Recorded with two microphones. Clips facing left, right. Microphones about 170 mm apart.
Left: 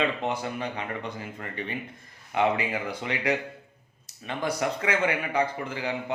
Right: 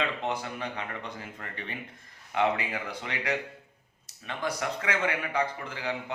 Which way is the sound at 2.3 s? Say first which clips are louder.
Left 3 dB; 10° left (ahead or behind).